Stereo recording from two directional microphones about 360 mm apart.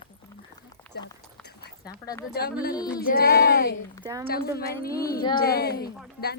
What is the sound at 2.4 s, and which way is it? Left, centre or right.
Speech, left.